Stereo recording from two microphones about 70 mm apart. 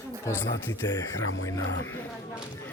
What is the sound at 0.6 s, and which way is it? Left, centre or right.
Speech, left.